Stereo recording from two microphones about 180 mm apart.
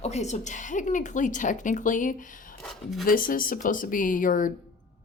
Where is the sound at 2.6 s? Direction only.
Centre (ahead or behind).